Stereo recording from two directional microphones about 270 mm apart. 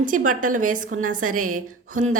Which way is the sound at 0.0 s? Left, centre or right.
Right.